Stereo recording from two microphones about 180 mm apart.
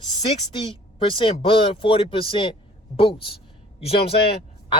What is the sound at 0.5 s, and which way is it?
A man's voice, 30° left (ahead or behind).